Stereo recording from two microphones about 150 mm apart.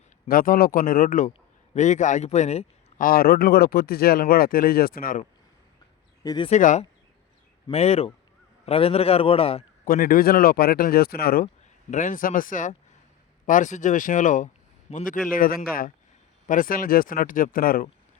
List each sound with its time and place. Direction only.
0.3 s speech: 70° left (ahead or behind)
1.3 s speech: 50° left (ahead or behind)
3.0 s speech: 75° left (ahead or behind)
6.2 s a man's voice: 30° left (ahead or behind)
6.5 s a man's voice: 55° left (ahead or behind)
9.8 s speech: 70° left (ahead or behind); by 11.4 s 90° left
11.9 s speech: 55° left (ahead or behind)
15.3 s speech: 75° left (ahead or behind)
16.5 s speech: 70° left (ahead or behind)